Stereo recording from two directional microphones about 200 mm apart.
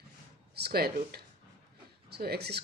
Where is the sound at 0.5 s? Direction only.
50° right (ahead or behind).